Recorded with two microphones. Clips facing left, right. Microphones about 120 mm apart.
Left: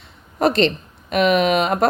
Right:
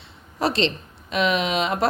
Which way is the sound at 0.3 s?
50° left (ahead or behind).